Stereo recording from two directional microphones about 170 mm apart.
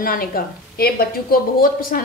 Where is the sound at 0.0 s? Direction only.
55° left (ahead or behind).